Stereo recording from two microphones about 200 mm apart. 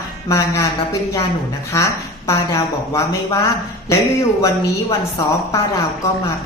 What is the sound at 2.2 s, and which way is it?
A woman's voice, 15° left (ahead or behind).